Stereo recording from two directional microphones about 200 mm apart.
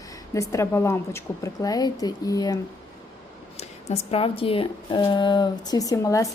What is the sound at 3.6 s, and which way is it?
Speech, 30° left (ahead or behind).